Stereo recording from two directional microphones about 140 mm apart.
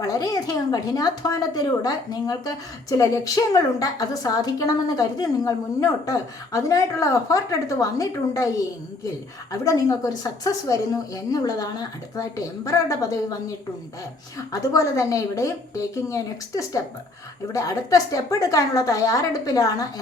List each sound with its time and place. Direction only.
0.0 s a woman's voice: 25° left (ahead or behind)
14.3 s a woman's voice: 25° left (ahead or behind)